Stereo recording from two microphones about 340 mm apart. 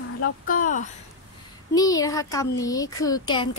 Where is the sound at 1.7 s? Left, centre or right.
Centre.